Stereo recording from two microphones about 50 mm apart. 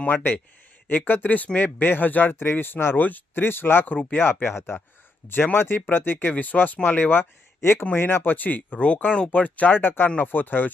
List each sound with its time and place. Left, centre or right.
0.0 s speech: left
5.3 s speech: left
7.6 s speech: left
7.9 s speech: left
9.7 s speech: left